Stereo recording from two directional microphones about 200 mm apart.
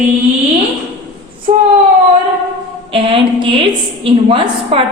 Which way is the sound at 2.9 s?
25° right (ahead or behind).